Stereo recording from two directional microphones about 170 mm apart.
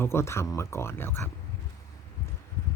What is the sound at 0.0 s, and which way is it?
Speech, 15° left (ahead or behind).